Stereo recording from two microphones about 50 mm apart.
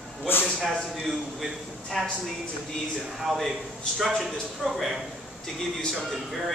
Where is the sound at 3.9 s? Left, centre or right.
Centre.